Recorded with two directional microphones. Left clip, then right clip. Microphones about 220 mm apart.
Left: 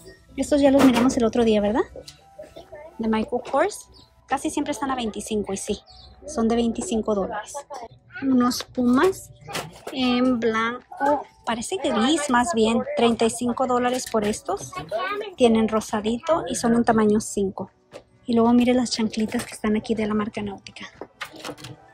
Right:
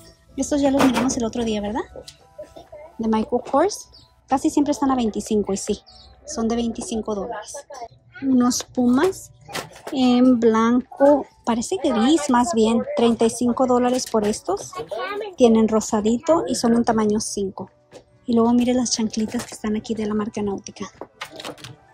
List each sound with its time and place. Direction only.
0.4 s speech: 15° right (ahead or behind)
3.0 s speech: 20° right (ahead or behind)
6.5 s a woman's voice: 45° right (ahead or behind)
7.0 s speech: 10° right (ahead or behind)
8.3 s speech: 20° right (ahead or behind)
21.0 s a sound: centre (ahead or behind)